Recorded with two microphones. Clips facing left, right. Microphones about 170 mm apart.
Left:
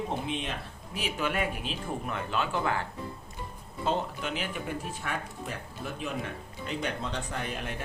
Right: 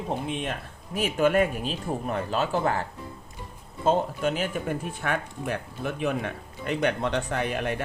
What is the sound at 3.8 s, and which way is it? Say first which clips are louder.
Speech: right 7 dB; 45° right (ahead or behind).